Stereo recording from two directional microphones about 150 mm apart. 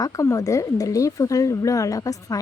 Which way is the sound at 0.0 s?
20° left (ahead or behind).